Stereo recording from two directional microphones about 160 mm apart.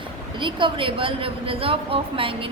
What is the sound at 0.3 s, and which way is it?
A woman's voice, 30° right (ahead or behind).